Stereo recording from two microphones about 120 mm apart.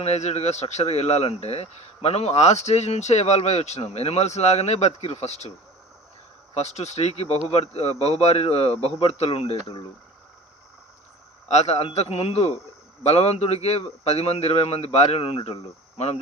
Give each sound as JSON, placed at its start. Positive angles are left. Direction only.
{"t": 0.0, "sound": "speech", "side_deg": 65}
{"t": 11.4, "sound": "speech", "side_deg": 65}